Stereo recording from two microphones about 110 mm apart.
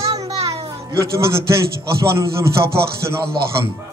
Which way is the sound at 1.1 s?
25° right (ahead or behind).